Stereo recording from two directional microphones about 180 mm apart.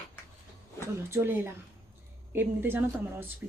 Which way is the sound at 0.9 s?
15° right (ahead or behind).